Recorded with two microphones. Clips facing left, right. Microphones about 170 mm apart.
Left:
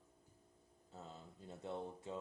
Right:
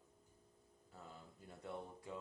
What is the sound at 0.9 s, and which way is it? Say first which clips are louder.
Speech: left 3 dB; 25° left (ahead or behind).